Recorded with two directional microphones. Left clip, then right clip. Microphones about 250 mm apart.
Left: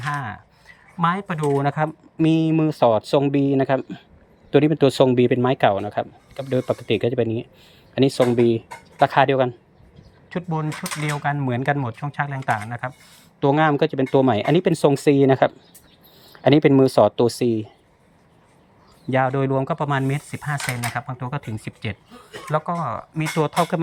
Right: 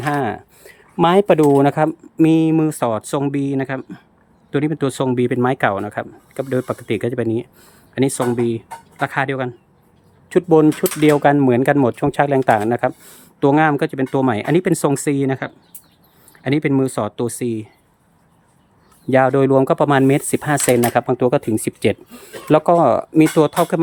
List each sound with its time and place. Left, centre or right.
0.0 s speech: right; by 9.6 s centre
10.3 s speech: right; by 17.7 s centre
19.1 s speech: right